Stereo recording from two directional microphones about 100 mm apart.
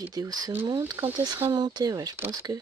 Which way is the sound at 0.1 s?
40° right (ahead or behind).